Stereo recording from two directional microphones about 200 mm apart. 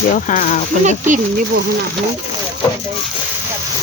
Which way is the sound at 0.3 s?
40° left (ahead or behind).